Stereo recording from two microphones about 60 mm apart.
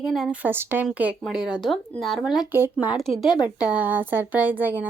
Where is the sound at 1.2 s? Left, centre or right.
Centre.